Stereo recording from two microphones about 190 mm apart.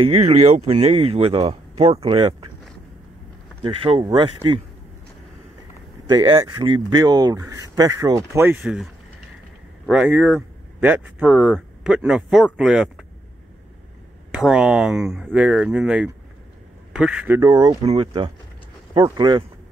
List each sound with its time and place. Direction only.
0.1 s speech: 35° right (ahead or behind)
3.6 s speech: 30° right (ahead or behind)
6.0 s speech: 20° right (ahead or behind)
9.8 s speech: 5° right (ahead or behind)
14.3 s speech: 5° right (ahead or behind)
17.4 s speech: 20° right (ahead or behind)